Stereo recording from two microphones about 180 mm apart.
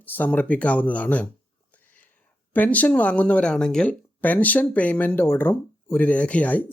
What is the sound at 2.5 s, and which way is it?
Speech, 10° left (ahead or behind).